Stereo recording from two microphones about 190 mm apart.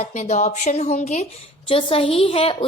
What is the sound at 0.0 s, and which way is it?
A woman's voice, 35° left (ahead or behind).